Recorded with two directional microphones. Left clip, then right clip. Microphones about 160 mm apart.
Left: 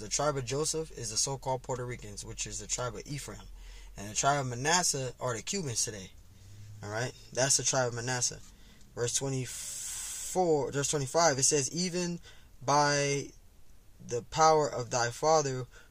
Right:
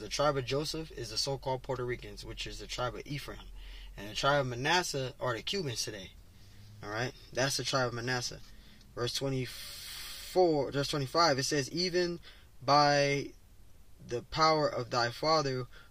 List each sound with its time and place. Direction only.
0.0 s speech: 35° left (ahead or behind)
9.2 s speech: 35° left (ahead or behind)